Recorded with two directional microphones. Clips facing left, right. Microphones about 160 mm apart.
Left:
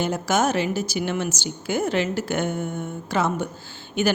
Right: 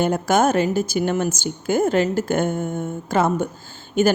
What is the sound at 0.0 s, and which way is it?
A woman's voice, 50° right (ahead or behind).